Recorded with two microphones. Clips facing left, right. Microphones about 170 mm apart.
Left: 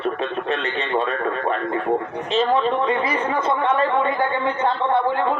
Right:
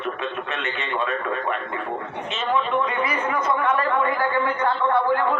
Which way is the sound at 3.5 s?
25° left (ahead or behind).